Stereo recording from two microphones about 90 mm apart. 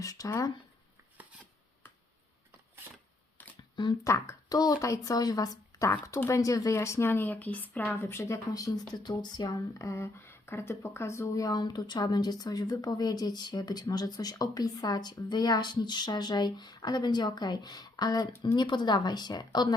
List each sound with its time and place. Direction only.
0.0 s speech: 40° left (ahead or behind)
3.6 s a sound: 55° left (ahead or behind)
4.0 s a woman's voice: 35° left (ahead or behind); by 7.9 s 20° left (ahead or behind)
7.9 s speech: 30° left (ahead or behind)
8.9 s speech: 55° left (ahead or behind)